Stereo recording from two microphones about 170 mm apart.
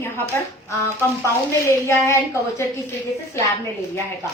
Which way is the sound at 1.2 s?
15° left (ahead or behind).